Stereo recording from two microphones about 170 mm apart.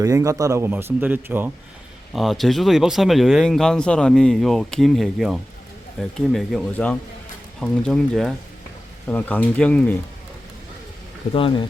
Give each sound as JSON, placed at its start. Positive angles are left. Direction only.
{"t": 0.0, "sound": "speech", "side_deg": -20}
{"t": 2.1, "sound": "speech", "side_deg": 0}
{"t": 11.3, "sound": "speech", "side_deg": 30}